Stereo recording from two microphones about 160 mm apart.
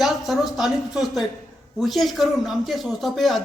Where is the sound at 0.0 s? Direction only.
Centre (ahead or behind).